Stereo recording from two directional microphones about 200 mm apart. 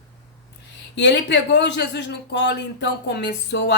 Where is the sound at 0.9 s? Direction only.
60° left (ahead or behind).